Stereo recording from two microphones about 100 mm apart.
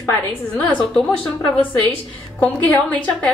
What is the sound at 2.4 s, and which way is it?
Speech, 15° left (ahead or behind).